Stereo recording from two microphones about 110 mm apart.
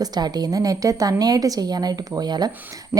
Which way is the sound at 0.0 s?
40° right (ahead or behind).